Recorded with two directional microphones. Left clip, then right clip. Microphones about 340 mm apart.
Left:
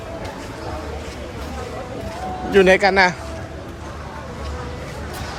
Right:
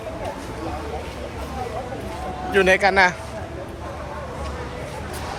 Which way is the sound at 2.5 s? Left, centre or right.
Centre.